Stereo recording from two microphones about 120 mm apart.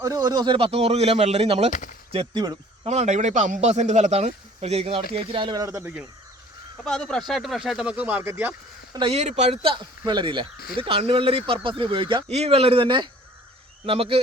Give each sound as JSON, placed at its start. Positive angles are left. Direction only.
{"t": 0.0, "sound": "speech", "side_deg": -30}
{"t": 2.1, "sound": "speech", "side_deg": -35}
{"t": 2.8, "sound": "a man's voice", "side_deg": -70}
{"t": 5.5, "sound": "speech", "side_deg": -25}
{"t": 6.8, "sound": "speech", "side_deg": 5}
{"t": 8.9, "sound": "speech", "side_deg": -40}
{"t": 9.1, "sound": "speech", "side_deg": -65}
{"t": 12.3, "sound": "speech", "side_deg": -60}